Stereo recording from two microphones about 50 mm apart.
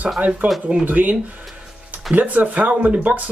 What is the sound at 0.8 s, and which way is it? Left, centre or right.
Speech, right.